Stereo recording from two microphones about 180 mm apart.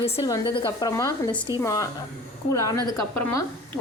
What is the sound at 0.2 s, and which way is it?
A woman's voice, 25° left (ahead or behind).